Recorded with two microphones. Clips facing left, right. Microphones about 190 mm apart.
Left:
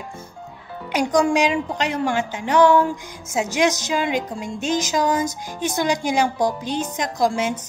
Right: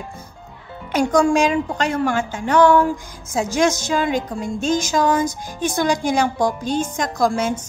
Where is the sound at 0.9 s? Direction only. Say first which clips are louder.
Right 2 dB; 20° left (ahead or behind).